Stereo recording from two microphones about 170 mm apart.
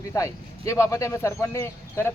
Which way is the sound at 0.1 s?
15° left (ahead or behind).